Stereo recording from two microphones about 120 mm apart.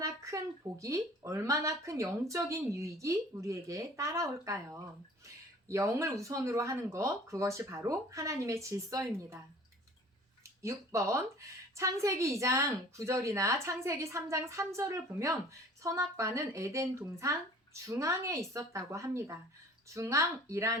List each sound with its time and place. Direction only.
0.0 s speech: 25° right (ahead or behind)
10.6 s speech: 25° right (ahead or behind)